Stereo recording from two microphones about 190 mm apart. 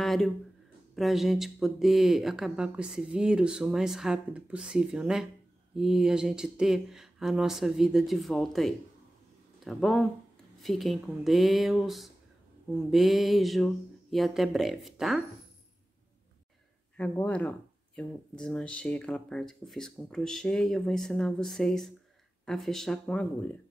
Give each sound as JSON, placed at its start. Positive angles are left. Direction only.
{"t": 0.0, "sound": "a sound", "side_deg": 0}
{"t": 0.9, "sound": "speech", "side_deg": 0}
{"t": 16.9, "sound": "speech", "side_deg": 5}